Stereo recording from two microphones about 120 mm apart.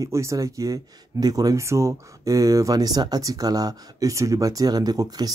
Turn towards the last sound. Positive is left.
turn(degrees=-30)  # may be behind; listen again after turning